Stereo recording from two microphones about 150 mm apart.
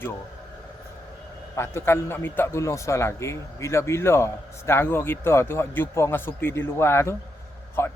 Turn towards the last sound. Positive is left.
turn(degrees=15)  # may be behind; listen again after turning